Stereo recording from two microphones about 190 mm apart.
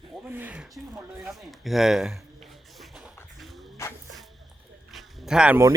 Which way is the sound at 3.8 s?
15° left (ahead or behind).